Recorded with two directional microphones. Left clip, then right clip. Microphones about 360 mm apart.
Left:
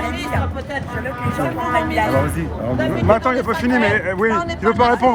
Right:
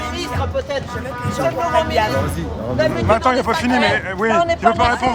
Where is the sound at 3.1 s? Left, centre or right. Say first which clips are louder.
Left 1 dB; centre.